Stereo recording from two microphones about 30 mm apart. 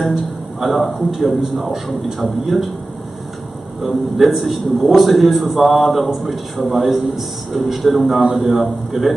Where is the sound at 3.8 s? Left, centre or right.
Centre.